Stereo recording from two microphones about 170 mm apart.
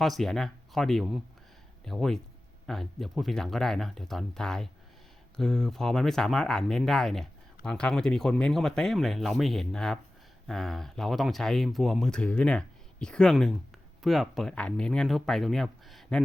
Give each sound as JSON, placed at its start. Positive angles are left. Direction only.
{"t": 0.0, "sound": "speech", "side_deg": 0}